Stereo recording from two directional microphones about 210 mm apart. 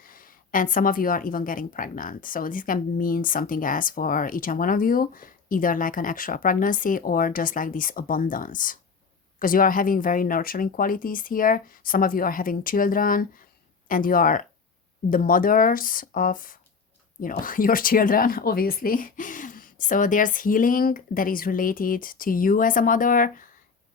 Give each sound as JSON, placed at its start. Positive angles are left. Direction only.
{"t": 0.0, "sound": "a woman's voice", "side_deg": 40}